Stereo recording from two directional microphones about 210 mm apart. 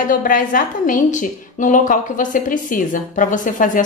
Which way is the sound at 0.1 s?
40° left (ahead or behind).